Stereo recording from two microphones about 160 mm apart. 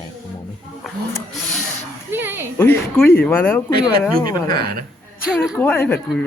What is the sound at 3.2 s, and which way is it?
Speech, 15° left (ahead or behind).